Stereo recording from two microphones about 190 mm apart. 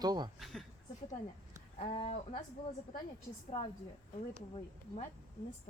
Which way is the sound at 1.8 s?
30° left (ahead or behind).